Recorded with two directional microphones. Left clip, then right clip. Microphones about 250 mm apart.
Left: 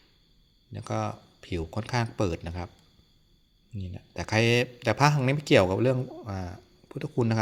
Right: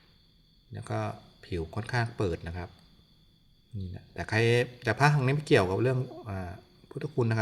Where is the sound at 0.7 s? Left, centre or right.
Centre.